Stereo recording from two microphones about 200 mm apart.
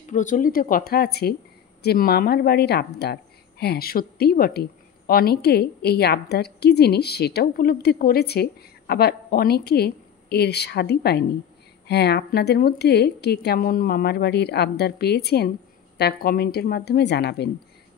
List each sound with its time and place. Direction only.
0.1 s a woman's voice: 40° left (ahead or behind); by 17.5 s 55° left (ahead or behind)